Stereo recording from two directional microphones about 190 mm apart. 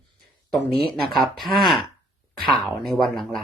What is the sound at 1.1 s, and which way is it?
Speech, centre (ahead or behind).